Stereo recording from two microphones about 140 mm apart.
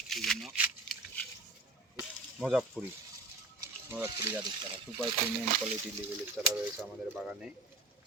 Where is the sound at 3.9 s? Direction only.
20° right (ahead or behind).